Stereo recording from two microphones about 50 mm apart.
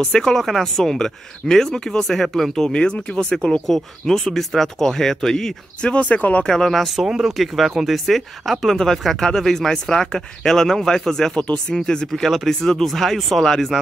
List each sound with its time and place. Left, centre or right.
0.0 s speech: centre
3.6 s speech: centre; by 6.4 s left
6.4 s speech: centre
7.1 s speech: centre
7.3 s speech: centre
12.1 s speech: centre